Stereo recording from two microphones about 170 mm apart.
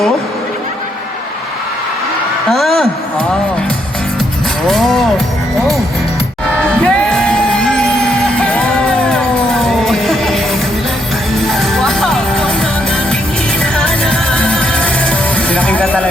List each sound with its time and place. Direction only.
2.5 s a sound: centre (ahead or behind)
4.6 s music: centre (ahead or behind)
6.6 s music: 5° left (ahead or behind)
13.7 s music: 5° left (ahead or behind)